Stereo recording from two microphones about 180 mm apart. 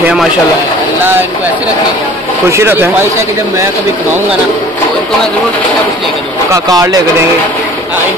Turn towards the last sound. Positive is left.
turn(degrees=-20)  # may be behind; listen again after turning